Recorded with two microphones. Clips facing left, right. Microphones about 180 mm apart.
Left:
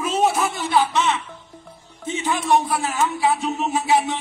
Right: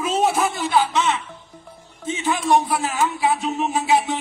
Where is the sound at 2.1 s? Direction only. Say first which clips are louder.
Right 1 dB; 20° right (ahead or behind).